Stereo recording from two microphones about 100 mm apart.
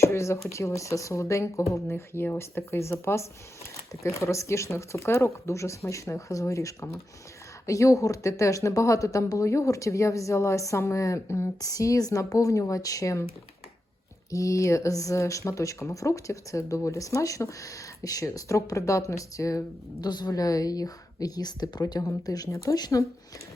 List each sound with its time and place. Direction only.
0.0 s speech: 30° left (ahead or behind)
14.3 s speech: 35° left (ahead or behind)